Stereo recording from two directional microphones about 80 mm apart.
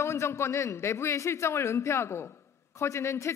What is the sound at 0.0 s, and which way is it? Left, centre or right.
A man's voice, left.